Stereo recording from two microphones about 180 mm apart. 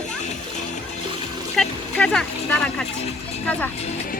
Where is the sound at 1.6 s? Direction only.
5° left (ahead or behind).